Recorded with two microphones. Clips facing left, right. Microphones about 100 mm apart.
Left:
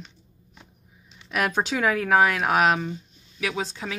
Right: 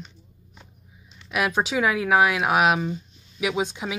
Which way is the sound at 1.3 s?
5° right (ahead or behind).